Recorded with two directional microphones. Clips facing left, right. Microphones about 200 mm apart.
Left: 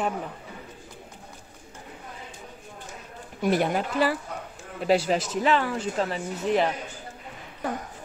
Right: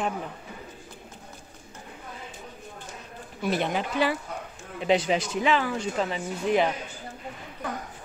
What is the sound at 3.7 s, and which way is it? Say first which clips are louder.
Speech: left 1 dB; 5° left (ahead or behind).